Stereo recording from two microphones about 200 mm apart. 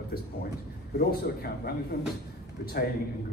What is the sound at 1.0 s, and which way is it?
Speech, 50° left (ahead or behind).